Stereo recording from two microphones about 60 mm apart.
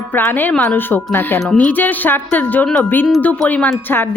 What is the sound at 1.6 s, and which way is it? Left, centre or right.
A woman's voice, left.